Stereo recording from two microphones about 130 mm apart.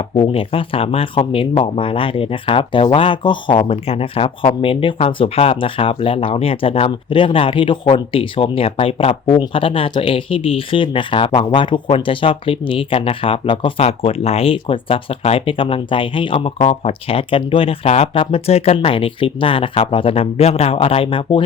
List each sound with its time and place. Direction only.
0.2 s speech: 45° left (ahead or behind)